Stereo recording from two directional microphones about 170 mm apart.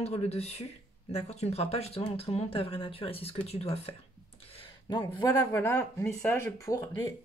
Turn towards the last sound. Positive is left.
turn(degrees=15)  # may be behind; listen again after turning